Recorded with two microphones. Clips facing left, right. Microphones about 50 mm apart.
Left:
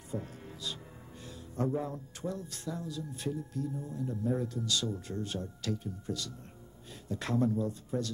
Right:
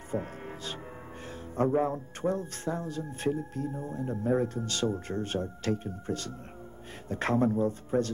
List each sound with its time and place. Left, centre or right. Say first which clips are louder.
0.1 s music: right 6 dB; right
1.2 s speech: right 6 dB; right